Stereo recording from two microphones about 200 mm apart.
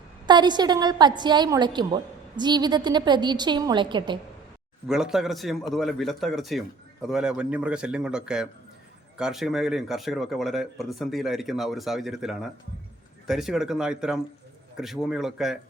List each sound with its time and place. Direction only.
0.3 s a woman's voice: 20° right (ahead or behind)
4.9 s speech: 5° right (ahead or behind)